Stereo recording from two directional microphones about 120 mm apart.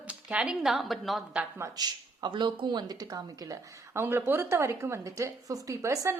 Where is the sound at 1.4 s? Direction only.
20° right (ahead or behind).